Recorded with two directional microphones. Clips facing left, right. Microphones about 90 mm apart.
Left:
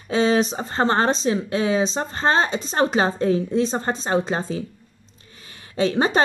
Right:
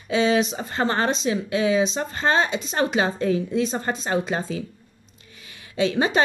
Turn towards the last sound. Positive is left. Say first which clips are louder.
# left 1 dB
turn(degrees=40)  # may be behind; listen again after turning